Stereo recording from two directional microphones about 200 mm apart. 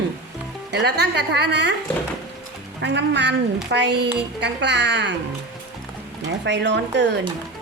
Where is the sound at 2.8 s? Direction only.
60° right (ahead or behind).